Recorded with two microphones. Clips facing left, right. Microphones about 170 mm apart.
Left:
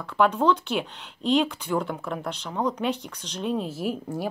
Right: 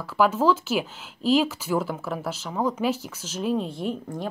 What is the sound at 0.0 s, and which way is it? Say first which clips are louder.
A woman's voice: right 1 dB; 5° right (ahead or behind).